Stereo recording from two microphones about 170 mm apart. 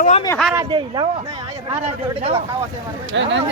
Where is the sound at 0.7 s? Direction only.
30° right (ahead or behind).